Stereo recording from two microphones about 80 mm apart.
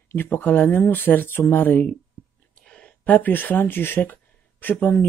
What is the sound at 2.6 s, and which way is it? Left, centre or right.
Speech, centre.